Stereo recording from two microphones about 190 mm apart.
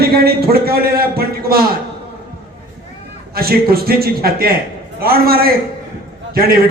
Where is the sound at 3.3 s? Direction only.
55° right (ahead or behind).